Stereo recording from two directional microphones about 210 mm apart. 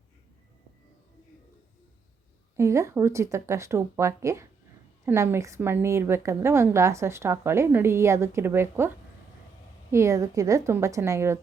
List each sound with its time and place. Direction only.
2.6 s a woman's voice: 15° right (ahead or behind)